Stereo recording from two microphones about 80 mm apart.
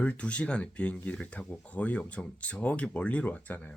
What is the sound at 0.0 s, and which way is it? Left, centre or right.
Speech, centre.